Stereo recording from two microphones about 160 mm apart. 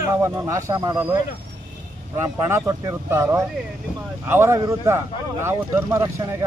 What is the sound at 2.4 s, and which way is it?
Speech, 20° right (ahead or behind).